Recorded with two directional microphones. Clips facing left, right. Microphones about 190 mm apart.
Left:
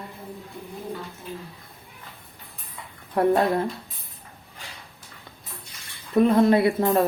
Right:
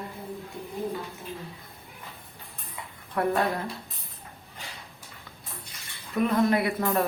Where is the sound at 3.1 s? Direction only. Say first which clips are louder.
Left 6 dB; 30° left (ahead or behind).